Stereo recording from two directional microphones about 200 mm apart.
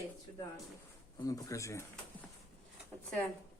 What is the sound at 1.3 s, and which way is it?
Speech, 15° left (ahead or behind).